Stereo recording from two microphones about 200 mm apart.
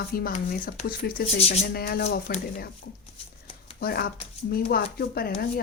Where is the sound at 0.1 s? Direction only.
50° left (ahead or behind).